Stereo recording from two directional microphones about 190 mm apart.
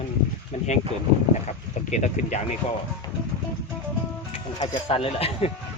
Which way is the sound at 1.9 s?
35° left (ahead or behind).